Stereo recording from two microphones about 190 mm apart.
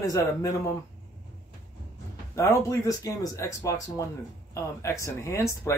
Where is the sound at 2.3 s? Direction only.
15° left (ahead or behind).